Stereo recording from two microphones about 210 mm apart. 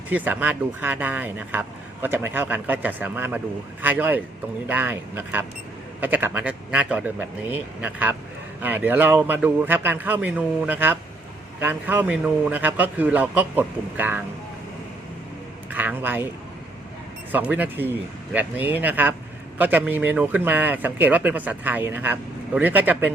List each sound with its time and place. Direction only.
0.1 s speech: 5° right (ahead or behind)
15.7 s speech: 10° right (ahead or behind)
17.3 s speech: 10° right (ahead or behind)